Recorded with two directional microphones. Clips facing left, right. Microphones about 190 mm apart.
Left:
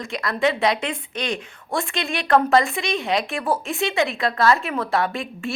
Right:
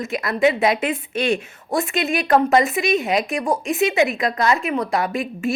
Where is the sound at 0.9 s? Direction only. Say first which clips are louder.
Right 5 dB; 20° right (ahead or behind).